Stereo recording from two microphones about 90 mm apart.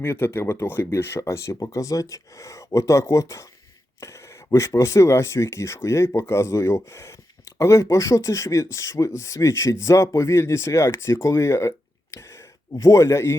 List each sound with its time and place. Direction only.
0.0 s speech: 30° left (ahead or behind)